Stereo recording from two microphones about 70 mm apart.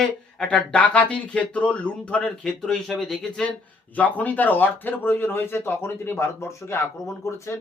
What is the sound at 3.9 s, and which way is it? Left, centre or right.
Speech, left.